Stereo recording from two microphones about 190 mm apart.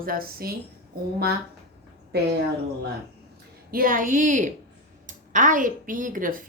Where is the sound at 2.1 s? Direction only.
60° right (ahead or behind).